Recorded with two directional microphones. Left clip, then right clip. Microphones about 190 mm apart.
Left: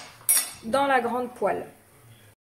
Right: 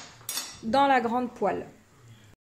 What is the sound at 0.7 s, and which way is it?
Speech, 25° right (ahead or behind).